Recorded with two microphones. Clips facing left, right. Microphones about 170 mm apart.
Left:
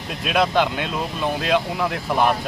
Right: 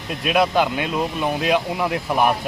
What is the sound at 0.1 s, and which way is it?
Speech, 5° right (ahead or behind).